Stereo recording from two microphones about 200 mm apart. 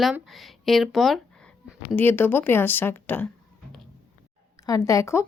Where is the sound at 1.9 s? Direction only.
10° left (ahead or behind).